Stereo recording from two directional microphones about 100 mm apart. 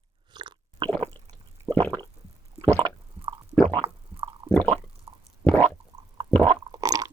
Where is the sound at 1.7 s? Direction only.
35° right (ahead or behind).